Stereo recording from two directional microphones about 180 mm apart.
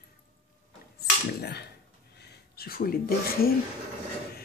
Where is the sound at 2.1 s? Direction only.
60° left (ahead or behind).